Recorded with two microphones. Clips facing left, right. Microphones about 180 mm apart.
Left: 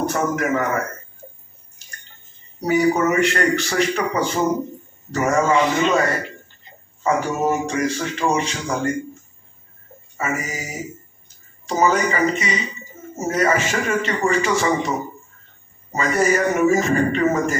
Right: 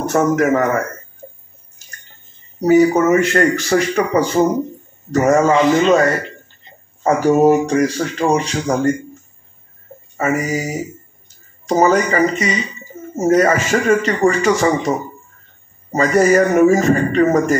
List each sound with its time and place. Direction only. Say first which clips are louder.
0.1 s speech: right 7 dB; 45° right (ahead or behind)
2.9 s speech: right 4 dB; 40° right (ahead or behind)
10.1 s speech: right 8 dB; 40° right (ahead or behind)